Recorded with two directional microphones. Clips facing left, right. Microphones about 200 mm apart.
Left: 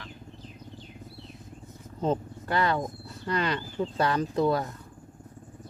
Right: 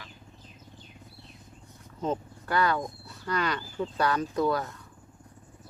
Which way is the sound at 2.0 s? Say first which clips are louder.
Left 3 dB; 30° left (ahead or behind).